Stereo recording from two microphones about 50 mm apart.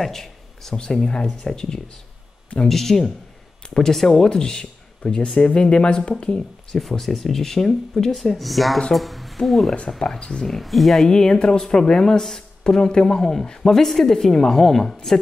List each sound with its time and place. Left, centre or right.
0.0 s a sound: centre
0.7 s speech: centre
6.8 s speech: centre
10.4 s speech: centre
11.1 s speech: centre